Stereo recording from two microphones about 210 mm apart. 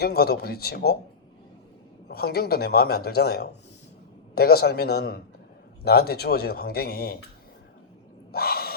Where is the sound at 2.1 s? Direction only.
50° left (ahead or behind).